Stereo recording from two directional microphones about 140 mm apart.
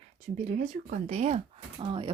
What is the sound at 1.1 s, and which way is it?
Speech, 50° right (ahead or behind).